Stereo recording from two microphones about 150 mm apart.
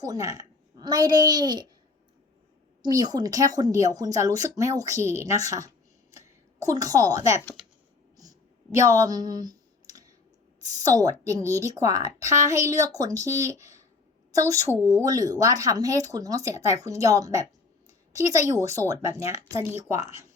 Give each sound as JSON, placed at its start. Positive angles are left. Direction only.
{"t": 0.0, "sound": "a woman's voice", "side_deg": -25}
{"t": 2.8, "sound": "speech", "side_deg": -25}
{"t": 8.7, "sound": "speech", "side_deg": -20}